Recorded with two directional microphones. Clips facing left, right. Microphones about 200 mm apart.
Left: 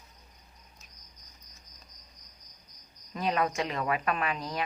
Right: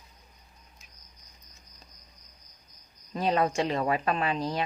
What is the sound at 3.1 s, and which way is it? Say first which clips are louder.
Speech: right 3 dB; 30° right (ahead or behind).